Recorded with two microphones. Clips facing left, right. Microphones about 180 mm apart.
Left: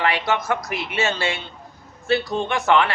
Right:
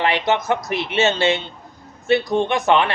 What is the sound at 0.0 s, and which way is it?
Speech, 20° right (ahead or behind).